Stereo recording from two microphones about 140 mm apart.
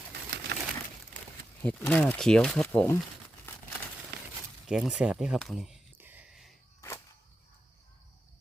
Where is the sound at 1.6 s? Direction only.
10° left (ahead or behind).